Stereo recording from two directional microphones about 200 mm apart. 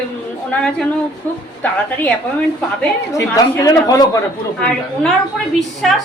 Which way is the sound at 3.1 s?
15° left (ahead or behind).